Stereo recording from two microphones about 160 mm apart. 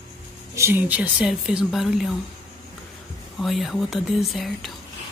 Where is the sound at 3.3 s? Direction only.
Centre (ahead or behind).